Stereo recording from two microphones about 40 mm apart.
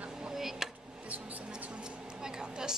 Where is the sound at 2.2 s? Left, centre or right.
Centre.